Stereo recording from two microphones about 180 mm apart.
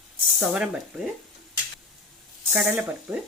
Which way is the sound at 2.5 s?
5° right (ahead or behind).